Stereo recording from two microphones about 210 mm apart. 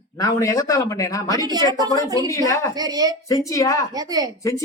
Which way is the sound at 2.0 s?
15° right (ahead or behind).